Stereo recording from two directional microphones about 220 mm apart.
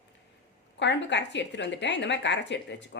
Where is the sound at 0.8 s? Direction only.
55° left (ahead or behind).